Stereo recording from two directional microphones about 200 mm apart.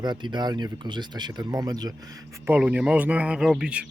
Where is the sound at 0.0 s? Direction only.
20° right (ahead or behind).